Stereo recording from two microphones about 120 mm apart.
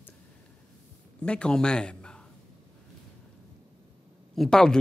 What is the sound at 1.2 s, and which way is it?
Speech, 10° left (ahead or behind).